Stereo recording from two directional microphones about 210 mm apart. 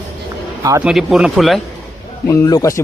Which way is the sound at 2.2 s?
15° left (ahead or behind).